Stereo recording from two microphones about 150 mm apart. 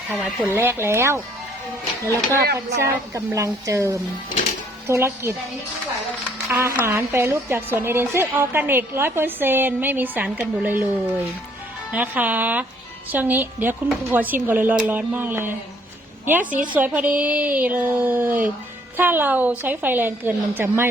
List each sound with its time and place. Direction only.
0.1 s speech: 5° right (ahead or behind)
0.4 s a woman's voice: 15° right (ahead or behind)
2.8 s a woman's voice: 20° right (ahead or behind)
6.5 s a woman's voice: 20° right (ahead or behind)
11.9 s a woman's voice: 10° right (ahead or behind)